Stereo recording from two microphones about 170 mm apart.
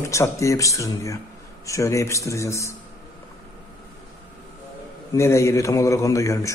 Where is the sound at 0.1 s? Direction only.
15° left (ahead or behind).